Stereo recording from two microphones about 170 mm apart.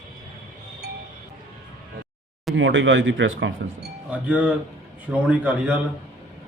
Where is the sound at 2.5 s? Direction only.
90° right.